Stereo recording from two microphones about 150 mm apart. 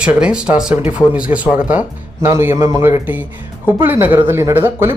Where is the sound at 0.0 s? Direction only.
5° right (ahead or behind).